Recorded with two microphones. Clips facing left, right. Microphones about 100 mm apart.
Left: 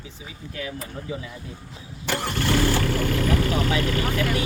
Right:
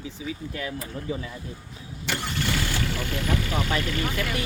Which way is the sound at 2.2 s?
45° left (ahead or behind).